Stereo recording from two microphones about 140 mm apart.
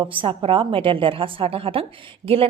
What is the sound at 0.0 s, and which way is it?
A woman's voice, 40° right (ahead or behind).